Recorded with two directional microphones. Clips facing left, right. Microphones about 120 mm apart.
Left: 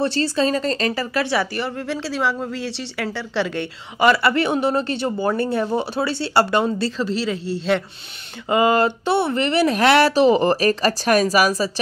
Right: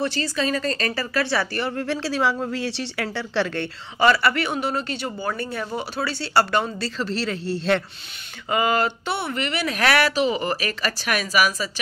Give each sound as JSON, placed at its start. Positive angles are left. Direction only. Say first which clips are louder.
{"t": 0.0, "sound": "speech", "louder": "left 5 dB", "side_deg": 30}
{"t": 1.6, "sound": "speech", "louder": "even", "side_deg": 5}
{"t": 7.1, "sound": "speech", "louder": "left 3 dB", "side_deg": 10}
{"t": 8.5, "sound": "speech", "louder": "left 5 dB", "side_deg": 25}